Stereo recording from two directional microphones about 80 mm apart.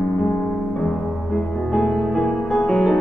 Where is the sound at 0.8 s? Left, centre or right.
Centre.